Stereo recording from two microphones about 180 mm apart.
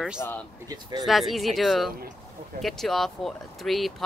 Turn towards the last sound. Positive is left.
turn(degrees=0)  # may be behind; listen again after turning